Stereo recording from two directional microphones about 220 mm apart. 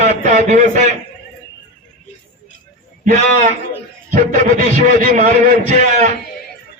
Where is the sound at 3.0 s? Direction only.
30° right (ahead or behind).